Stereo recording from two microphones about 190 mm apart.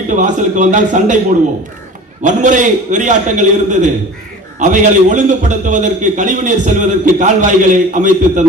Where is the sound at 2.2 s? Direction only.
40° right (ahead or behind).